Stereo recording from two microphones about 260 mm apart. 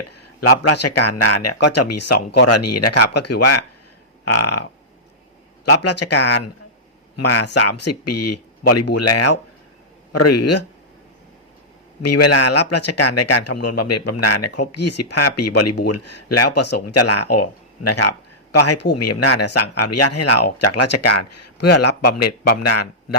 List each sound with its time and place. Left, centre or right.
0.1 s speech: left
5.6 s speech: left
7.2 s speech: left
12.0 s speech: left